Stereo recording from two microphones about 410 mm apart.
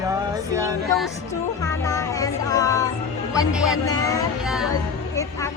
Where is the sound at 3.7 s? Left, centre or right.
Centre.